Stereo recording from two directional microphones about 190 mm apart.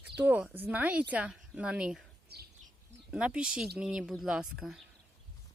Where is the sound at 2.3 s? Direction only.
55° right (ahead or behind).